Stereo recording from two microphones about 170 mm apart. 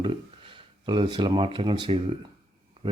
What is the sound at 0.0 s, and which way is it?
A man's voice, 30° right (ahead or behind).